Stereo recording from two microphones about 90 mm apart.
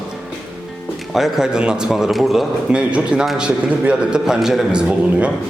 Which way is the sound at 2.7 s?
10° right (ahead or behind).